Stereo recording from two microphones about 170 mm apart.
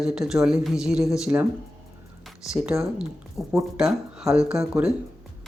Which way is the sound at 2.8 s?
5° right (ahead or behind).